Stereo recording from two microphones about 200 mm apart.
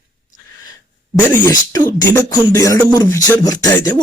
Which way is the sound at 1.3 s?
15° left (ahead or behind).